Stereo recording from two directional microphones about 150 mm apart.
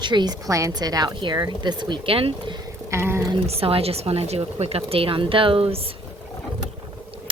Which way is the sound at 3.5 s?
40° right (ahead or behind).